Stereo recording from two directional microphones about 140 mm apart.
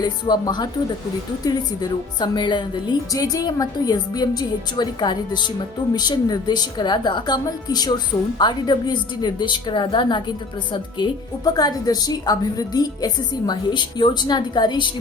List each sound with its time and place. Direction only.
0.0 s a woman's voice: 30° left (ahead or behind)
11.4 s a woman's voice: 30° left (ahead or behind)